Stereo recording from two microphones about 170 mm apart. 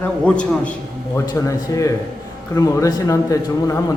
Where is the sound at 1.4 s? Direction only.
20° left (ahead or behind).